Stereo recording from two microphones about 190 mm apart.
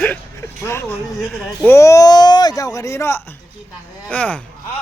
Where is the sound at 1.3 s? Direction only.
Centre (ahead or behind).